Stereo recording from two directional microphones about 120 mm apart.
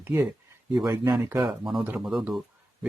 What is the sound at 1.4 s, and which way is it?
Speech, centre (ahead or behind).